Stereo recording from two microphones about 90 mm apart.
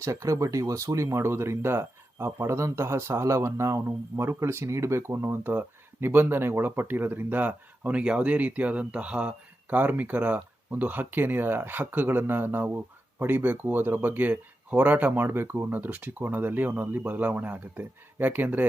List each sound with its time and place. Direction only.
0.0 s speech: 35° right (ahead or behind); by 18.6 s 20° right (ahead or behind)